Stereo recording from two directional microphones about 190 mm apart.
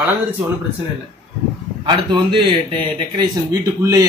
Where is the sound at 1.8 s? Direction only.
25° right (ahead or behind).